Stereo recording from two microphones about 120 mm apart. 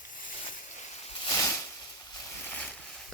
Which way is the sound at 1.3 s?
25° left (ahead or behind).